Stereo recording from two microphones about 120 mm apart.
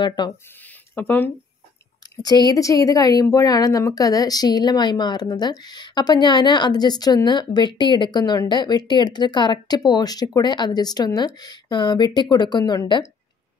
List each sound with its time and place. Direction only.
0.0 s speech: 40° left (ahead or behind)
0.9 s speech: 15° left (ahead or behind)
2.2 s speech: 35° left (ahead or behind)